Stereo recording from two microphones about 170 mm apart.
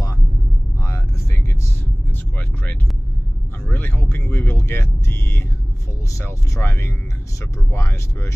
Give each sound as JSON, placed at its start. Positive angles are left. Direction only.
{"t": 0.8, "sound": "vehicle", "side_deg": 15}
{"t": 2.3, "sound": "speech", "side_deg": 10}